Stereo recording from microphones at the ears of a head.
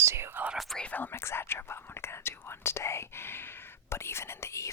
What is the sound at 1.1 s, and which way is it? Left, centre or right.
Speech, left.